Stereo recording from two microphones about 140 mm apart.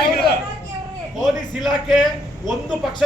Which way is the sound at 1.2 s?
Centre (ahead or behind).